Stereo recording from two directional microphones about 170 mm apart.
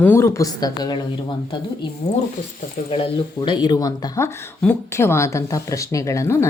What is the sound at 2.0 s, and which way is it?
Speech, 40° left (ahead or behind).